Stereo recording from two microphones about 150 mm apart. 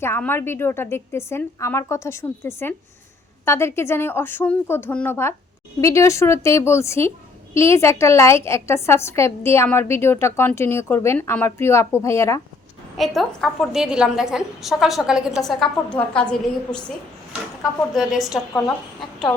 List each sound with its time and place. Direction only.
0.0 s a woman's voice: 15° left (ahead or behind)
13.0 s a woman's voice: centre (ahead or behind)
17.9 s a woman's voice: centre (ahead or behind)